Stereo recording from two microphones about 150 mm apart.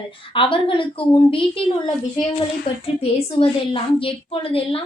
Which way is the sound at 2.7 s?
45° left (ahead or behind).